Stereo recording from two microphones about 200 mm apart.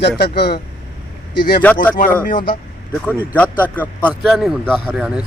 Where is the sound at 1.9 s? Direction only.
45° left (ahead or behind).